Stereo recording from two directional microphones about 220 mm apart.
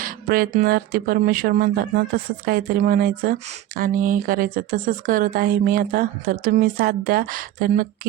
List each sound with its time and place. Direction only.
0.0 s speech: 40° right (ahead or behind)